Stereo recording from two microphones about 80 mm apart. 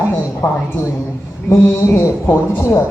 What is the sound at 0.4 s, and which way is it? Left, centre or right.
Speech, left.